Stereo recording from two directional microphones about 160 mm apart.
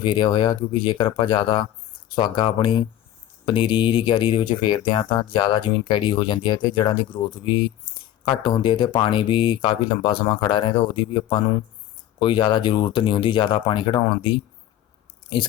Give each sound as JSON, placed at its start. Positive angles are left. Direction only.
{"t": 0.0, "sound": "speech", "side_deg": 30}